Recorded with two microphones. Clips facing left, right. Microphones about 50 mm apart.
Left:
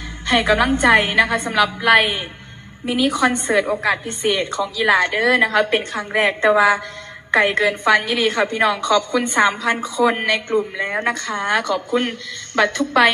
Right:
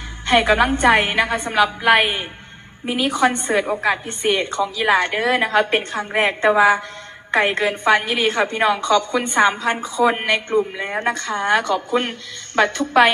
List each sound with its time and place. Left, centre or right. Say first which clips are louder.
0.3 s a woman's voice: right 1 dB; right